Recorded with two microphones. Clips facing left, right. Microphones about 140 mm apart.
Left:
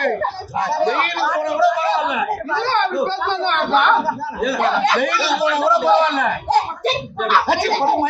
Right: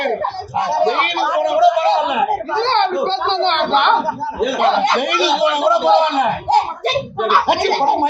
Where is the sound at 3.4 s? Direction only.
20° right (ahead or behind).